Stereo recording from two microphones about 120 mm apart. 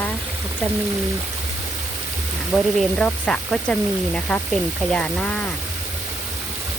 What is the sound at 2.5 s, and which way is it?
Speech, 5° left (ahead or behind).